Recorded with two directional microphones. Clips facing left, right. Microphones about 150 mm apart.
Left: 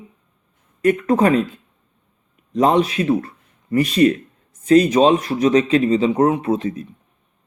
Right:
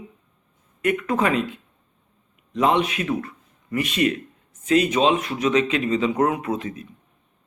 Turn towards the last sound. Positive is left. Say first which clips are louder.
# left 6 dB
turn(degrees=35)  # may be behind; listen again after turning